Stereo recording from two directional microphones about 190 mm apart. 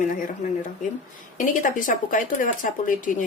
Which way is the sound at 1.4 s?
45° left (ahead or behind).